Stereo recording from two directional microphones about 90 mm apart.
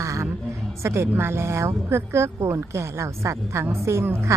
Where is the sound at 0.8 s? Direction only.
30° right (ahead or behind).